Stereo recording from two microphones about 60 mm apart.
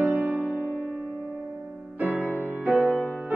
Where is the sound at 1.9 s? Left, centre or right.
Right.